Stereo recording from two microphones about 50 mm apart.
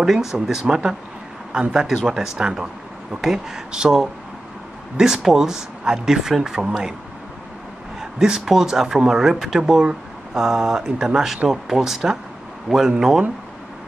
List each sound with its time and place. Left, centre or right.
0.0 s speech: centre
8.0 s a man's voice: centre